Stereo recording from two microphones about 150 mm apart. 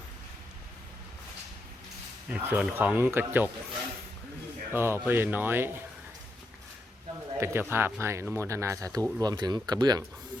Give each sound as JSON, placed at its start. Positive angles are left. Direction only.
{"t": 2.3, "sound": "speech", "side_deg": -10}
{"t": 4.7, "sound": "speech", "side_deg": -15}
{"t": 7.3, "sound": "speech", "side_deg": -15}